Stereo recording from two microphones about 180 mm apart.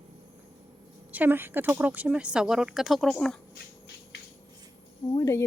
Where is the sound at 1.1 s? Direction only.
10° right (ahead or behind).